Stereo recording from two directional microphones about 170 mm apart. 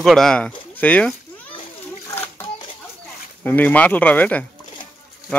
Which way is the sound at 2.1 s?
15° left (ahead or behind).